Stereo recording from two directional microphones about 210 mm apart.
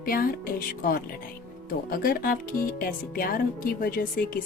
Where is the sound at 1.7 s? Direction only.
45° left (ahead or behind).